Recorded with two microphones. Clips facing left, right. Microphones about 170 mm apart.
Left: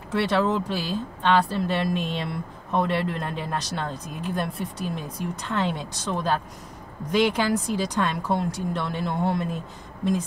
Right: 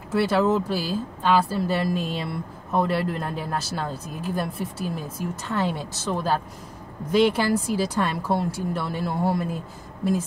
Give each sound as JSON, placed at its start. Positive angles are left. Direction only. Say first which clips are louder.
{"t": 0.1, "sound": "a woman's voice", "louder": "right 2 dB", "side_deg": -5}